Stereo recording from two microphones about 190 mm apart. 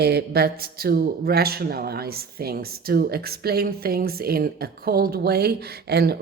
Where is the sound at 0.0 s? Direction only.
55° right (ahead or behind).